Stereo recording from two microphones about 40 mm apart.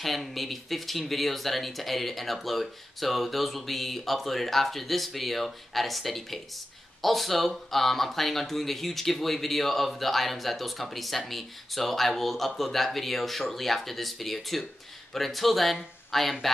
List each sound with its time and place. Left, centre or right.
0.0 s speech: centre